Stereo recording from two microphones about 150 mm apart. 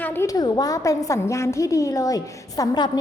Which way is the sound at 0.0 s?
15° left (ahead or behind).